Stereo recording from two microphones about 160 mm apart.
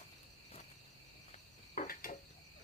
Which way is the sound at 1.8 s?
65° left (ahead or behind).